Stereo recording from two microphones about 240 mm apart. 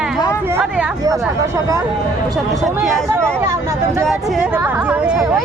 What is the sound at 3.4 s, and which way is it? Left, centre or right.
Speech, centre.